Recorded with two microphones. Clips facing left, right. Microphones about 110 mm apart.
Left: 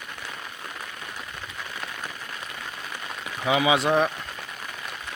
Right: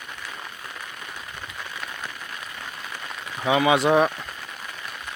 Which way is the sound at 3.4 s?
Centre (ahead or behind).